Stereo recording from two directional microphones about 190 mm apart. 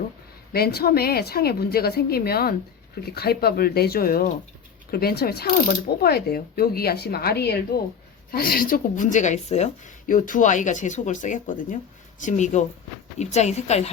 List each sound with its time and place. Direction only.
0.5 s a woman's voice: 55° left (ahead or behind); by 13.9 s 35° left (ahead or behind)